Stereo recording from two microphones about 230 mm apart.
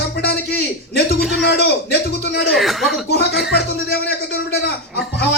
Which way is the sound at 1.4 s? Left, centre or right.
Left.